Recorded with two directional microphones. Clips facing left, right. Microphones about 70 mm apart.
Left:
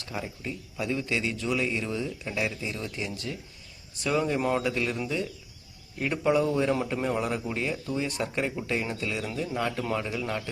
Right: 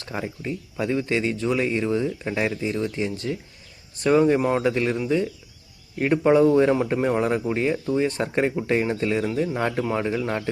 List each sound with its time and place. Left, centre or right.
0.0 s speech: right
3.9 s speech: right
4.6 s speech: right